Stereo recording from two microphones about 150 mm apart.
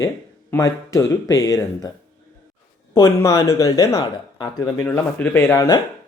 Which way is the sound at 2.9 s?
20° left (ahead or behind).